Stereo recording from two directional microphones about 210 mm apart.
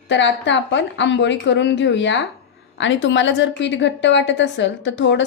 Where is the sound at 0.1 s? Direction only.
60° left (ahead or behind).